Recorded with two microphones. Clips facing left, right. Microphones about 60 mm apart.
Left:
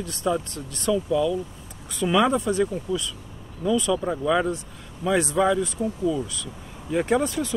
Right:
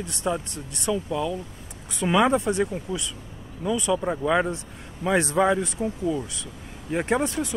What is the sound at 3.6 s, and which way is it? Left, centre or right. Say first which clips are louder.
Speech: left 1 dB; centre.